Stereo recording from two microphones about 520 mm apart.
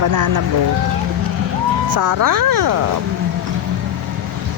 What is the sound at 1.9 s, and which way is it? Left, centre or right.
Speech, right.